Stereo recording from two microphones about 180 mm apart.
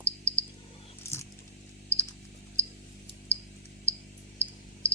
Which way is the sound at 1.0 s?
15° left (ahead or behind).